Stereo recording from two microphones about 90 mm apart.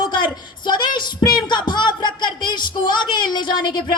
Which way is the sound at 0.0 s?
55° left (ahead or behind).